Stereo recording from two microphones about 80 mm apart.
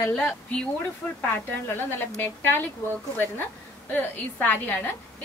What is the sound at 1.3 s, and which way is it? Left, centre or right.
A woman's voice, left.